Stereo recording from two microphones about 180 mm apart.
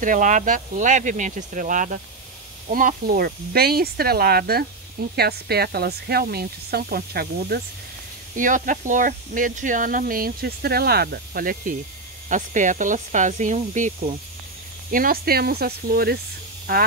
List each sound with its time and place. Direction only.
0.0 s speech: 45° right (ahead or behind)
8.4 s speech: 45° right (ahead or behind)